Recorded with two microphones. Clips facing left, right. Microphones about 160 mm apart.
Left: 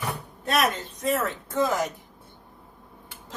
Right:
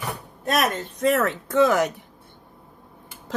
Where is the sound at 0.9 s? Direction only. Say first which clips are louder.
Right 5 dB; 70° right (ahead or behind).